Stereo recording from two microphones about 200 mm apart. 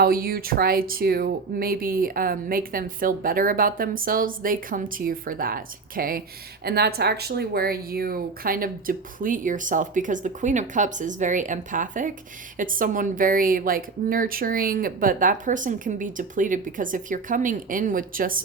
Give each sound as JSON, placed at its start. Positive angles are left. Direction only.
{"t": 0.0, "sound": "speech", "side_deg": -50}